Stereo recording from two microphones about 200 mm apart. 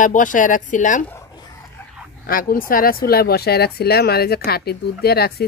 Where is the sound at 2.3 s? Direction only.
45° left (ahead or behind).